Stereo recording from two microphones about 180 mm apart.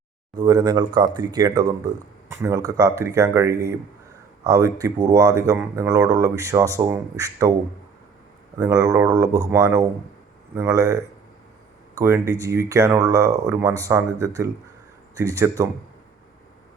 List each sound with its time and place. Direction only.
0.3 s speech: 25° right (ahead or behind)
8.5 s speech: 20° right (ahead or behind)